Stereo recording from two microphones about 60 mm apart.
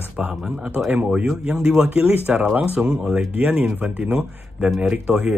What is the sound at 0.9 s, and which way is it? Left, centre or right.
Speech, centre.